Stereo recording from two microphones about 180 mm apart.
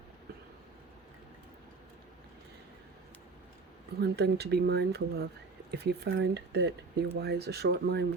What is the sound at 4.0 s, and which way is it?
Speech, 65° right (ahead or behind).